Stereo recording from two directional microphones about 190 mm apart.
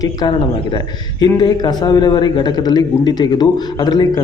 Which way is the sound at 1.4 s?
20° left (ahead or behind).